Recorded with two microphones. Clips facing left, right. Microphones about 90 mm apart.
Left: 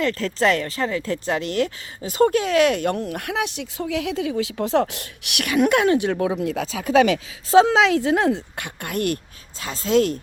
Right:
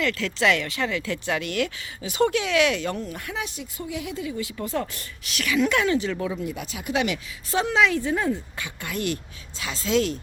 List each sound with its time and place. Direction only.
0.0 s speech: 35° left (ahead or behind); by 6.4 s 50° left (ahead or behind)
7.5 s speech: 90° left; by 9.1 s 55° left (ahead or behind)
9.6 s speech: 40° left (ahead or behind)